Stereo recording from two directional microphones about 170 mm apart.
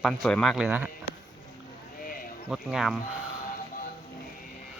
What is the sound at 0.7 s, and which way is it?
Speech, 10° right (ahead or behind).